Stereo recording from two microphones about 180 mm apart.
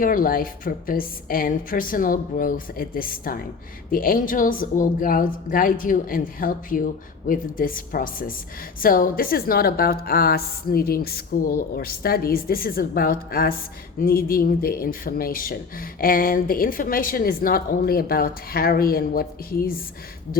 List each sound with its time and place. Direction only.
0.0 s a woman's voice: 50° left (ahead or behind)